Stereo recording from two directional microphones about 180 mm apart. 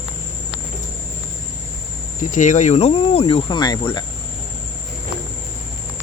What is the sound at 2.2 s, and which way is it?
Speech, 45° left (ahead or behind).